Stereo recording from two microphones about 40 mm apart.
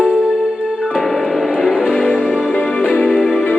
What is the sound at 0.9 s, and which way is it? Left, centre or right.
Music, centre.